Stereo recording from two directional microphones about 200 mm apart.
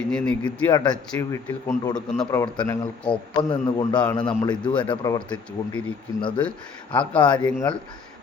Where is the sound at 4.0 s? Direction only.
5° left (ahead or behind).